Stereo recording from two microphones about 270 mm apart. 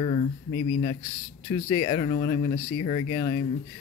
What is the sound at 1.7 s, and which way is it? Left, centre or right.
Speech, centre.